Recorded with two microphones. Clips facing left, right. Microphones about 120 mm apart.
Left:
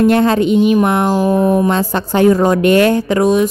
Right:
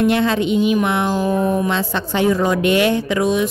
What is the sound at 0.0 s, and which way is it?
Speech, 45° left (ahead or behind).